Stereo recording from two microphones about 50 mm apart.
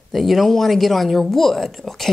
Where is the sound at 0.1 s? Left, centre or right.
Centre.